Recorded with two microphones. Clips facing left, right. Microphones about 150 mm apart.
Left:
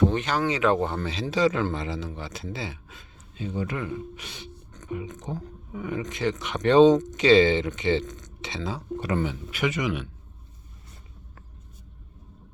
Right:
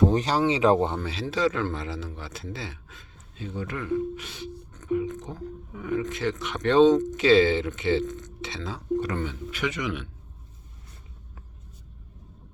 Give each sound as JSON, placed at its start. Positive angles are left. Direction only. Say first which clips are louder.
{"t": 0.0, "sound": "speech", "louder": "right 2 dB", "side_deg": -35}
{"t": 0.9, "sound": "a man's voice", "louder": "left 2 dB", "side_deg": -5}